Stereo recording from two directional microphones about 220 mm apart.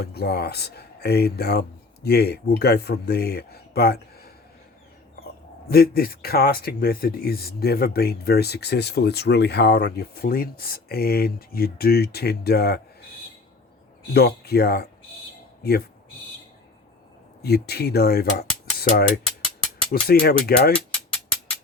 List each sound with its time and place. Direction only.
0.0 s speech: 45° left (ahead or behind)
5.6 s speech: 45° left (ahead or behind)
14.1 s speech: 45° left (ahead or behind)
17.4 s mechanisms: 45° left (ahead or behind)
19.9 s speech: 45° left (ahead or behind)